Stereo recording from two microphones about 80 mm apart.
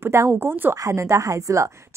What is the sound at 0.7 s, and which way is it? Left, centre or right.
Speech, right.